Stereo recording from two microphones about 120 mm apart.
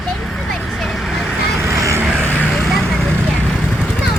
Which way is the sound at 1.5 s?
25° right (ahead or behind).